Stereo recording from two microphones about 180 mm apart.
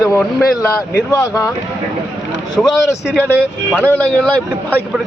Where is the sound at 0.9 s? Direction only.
15° left (ahead or behind).